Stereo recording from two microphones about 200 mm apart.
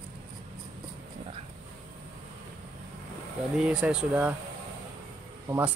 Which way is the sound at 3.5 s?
5° right (ahead or behind).